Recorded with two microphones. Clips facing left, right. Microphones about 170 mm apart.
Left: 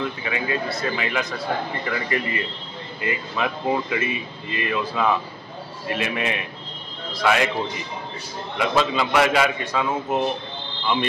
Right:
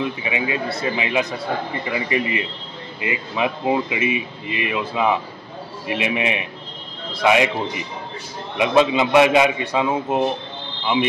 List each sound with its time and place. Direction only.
0.0 s a man's voice: 15° right (ahead or behind)